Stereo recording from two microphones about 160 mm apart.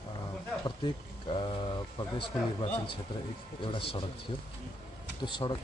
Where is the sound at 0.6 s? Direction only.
30° left (ahead or behind).